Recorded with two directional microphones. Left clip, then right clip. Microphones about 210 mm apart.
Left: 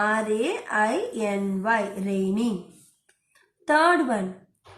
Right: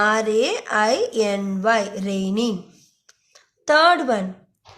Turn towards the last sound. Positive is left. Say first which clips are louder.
# right 4 dB
turn(degrees=-50)  # may be behind; listen again after turning